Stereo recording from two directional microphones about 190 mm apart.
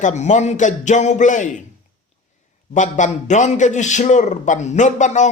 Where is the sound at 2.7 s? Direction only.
40° left (ahead or behind).